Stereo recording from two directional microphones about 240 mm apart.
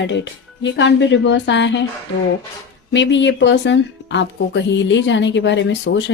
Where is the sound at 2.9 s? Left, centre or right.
Left.